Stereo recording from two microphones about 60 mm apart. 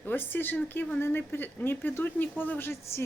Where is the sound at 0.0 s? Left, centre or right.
Left.